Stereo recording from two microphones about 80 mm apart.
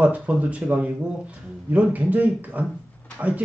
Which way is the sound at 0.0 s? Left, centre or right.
Centre.